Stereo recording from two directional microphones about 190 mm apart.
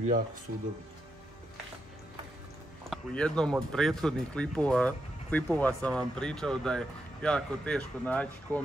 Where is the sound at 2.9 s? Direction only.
5° left (ahead or behind).